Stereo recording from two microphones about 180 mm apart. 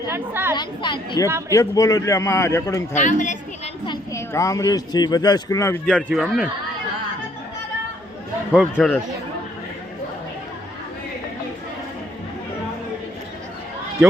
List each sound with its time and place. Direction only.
0.1 s a woman's voice: 10° right (ahead or behind)
0.5 s a woman's voice: 25° left (ahead or behind)
2.9 s speech: 45° left (ahead or behind)
3.8 s speech: 15° left (ahead or behind)
6.1 s a man's voice: 5° right (ahead or behind)
8.5 s a man's voice: centre (ahead or behind)